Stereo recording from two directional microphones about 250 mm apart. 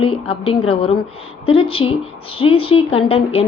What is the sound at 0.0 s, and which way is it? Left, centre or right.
A woman's voice, left.